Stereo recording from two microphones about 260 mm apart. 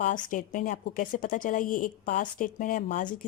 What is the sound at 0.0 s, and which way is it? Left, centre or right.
A woman's voice, left.